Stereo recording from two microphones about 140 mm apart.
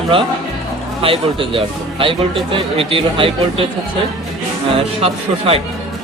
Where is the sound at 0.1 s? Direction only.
35° right (ahead or behind).